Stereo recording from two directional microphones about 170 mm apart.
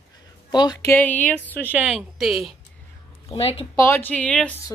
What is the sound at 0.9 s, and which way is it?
Speech, 10° left (ahead or behind).